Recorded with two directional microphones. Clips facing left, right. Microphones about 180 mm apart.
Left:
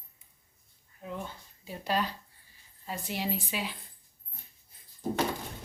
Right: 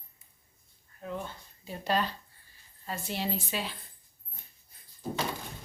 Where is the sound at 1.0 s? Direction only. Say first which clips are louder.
Right 2 dB; 10° left (ahead or behind).